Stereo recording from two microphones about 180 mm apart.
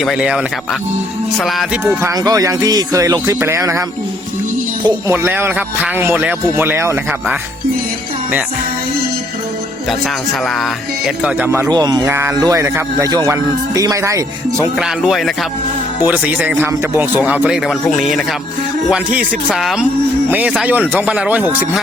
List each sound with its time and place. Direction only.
0.0 s speech: centre (ahead or behind)
1.8 s music: 15° right (ahead or behind)
5.1 s music: 10° right (ahead or behind)
10.4 s speech: centre (ahead or behind)
11.7 s speech: 20° right (ahead or behind)
12.0 s music: 15° right (ahead or behind)
14.8 s speech: centre (ahead or behind)
16.0 s music: 10° right (ahead or behind)
18.9 s speech: 5° right (ahead or behind)
20.5 s music: 5° right (ahead or behind)